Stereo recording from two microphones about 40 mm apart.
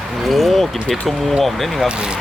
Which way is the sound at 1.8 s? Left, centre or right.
Right.